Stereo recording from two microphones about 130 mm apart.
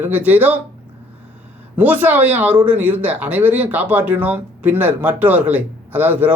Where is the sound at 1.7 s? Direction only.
15° right (ahead or behind).